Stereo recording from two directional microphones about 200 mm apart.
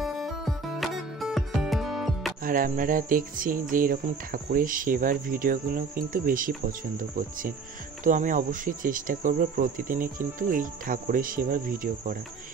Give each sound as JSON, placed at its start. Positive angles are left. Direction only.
{"t": 0.0, "sound": "music", "side_deg": 0}
{"t": 2.4, "sound": "speech", "side_deg": -45}